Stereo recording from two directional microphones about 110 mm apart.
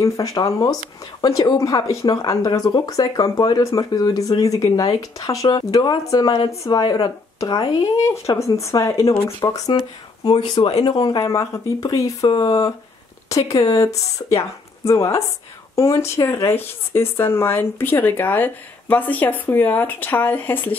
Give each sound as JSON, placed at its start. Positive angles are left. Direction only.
{"t": 0.0, "sound": "speech", "side_deg": 30}
{"t": 6.8, "sound": "speech", "side_deg": 40}
{"t": 10.6, "sound": "speech", "side_deg": 50}
{"t": 10.9, "sound": "speech", "side_deg": 35}